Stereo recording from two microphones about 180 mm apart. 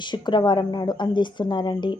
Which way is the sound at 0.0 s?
25° left (ahead or behind).